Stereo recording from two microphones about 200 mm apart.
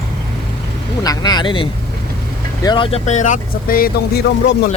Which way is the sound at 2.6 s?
25° left (ahead or behind).